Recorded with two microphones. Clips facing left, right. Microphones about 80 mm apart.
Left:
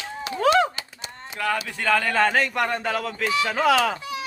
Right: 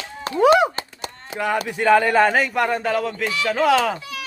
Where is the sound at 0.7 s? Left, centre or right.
Right.